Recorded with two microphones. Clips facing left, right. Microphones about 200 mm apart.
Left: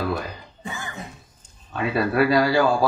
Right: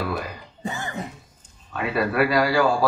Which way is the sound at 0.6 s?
40° right (ahead or behind).